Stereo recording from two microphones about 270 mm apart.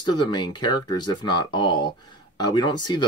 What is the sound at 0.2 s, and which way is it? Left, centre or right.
Speech, centre.